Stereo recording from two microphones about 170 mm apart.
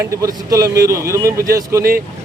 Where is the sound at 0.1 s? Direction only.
20° right (ahead or behind).